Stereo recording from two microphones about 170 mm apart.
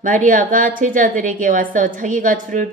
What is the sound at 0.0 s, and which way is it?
A woman's voice, 50° right (ahead or behind).